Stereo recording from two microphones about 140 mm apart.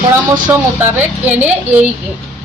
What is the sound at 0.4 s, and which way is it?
Speech, 15° right (ahead or behind).